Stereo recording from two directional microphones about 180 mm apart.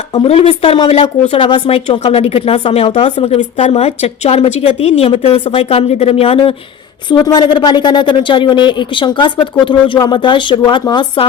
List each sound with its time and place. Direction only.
0.3 s speech: 35° left (ahead or behind)